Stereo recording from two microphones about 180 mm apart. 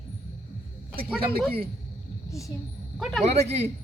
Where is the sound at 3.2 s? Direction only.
35° right (ahead or behind).